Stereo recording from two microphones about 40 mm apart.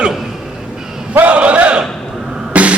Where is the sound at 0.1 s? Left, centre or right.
Centre.